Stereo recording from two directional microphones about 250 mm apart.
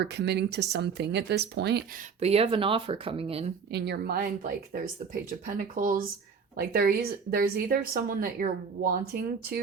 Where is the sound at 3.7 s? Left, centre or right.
Right.